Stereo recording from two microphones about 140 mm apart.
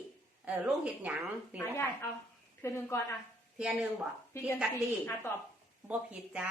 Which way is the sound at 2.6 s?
20° left (ahead or behind).